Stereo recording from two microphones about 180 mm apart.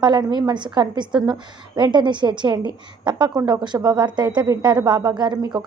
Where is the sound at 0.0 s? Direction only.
25° right (ahead or behind).